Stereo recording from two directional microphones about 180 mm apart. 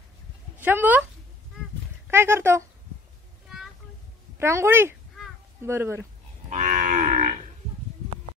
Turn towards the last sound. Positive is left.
turn(degrees=-45)  # may be behind; listen again after turning